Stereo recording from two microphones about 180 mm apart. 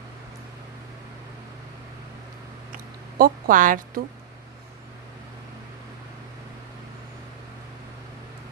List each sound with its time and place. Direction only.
3.2 s speech: 50° right (ahead or behind)